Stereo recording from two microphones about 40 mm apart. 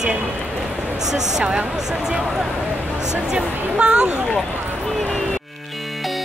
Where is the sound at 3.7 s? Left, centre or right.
Right.